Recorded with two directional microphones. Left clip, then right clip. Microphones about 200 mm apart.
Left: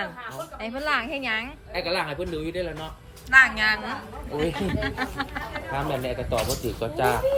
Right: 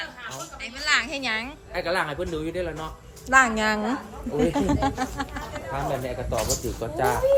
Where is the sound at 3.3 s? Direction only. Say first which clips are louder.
Left 2 dB; 35° right (ahead or behind).